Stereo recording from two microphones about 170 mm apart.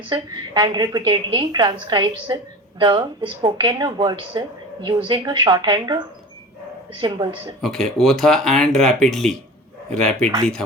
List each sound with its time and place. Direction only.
0.1 s a woman's voice: 25° right (ahead or behind)
7.6 s speech: centre (ahead or behind)